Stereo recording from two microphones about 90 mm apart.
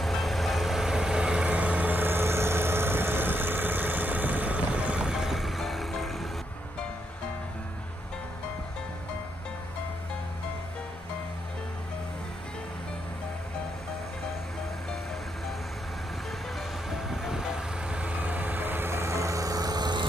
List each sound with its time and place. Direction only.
0.0 s vehicle: centre (ahead or behind)
16.9 s vehicle: 5° right (ahead or behind); by 20.1 s 50° right (ahead or behind)